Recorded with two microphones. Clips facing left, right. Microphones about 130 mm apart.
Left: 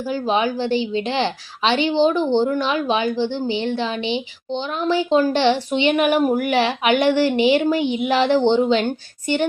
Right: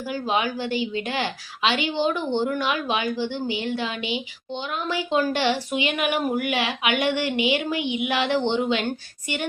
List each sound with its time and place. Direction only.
0.0 s a woman's voice: 30° left (ahead or behind)
5.9 s a woman's voice: 45° left (ahead or behind)